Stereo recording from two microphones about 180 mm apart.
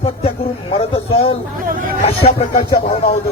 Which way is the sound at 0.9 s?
30° left (ahead or behind).